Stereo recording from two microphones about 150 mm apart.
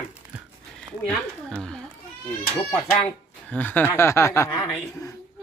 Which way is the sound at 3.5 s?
10° left (ahead or behind).